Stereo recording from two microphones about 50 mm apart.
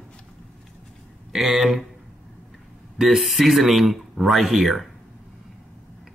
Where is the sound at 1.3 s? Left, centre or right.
Centre.